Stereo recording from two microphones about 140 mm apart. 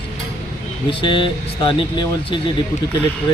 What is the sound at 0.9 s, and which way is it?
Speech, 35° left (ahead or behind).